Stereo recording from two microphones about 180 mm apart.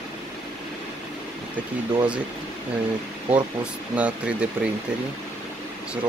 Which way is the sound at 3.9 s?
5° right (ahead or behind).